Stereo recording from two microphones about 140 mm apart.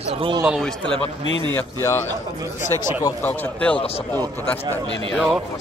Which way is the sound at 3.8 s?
45° left (ahead or behind).